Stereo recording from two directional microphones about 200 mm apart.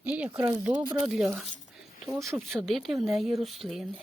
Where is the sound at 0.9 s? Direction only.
Centre (ahead or behind).